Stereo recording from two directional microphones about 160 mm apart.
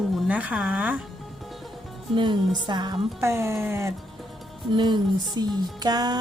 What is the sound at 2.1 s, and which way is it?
Speech, 30° right (ahead or behind).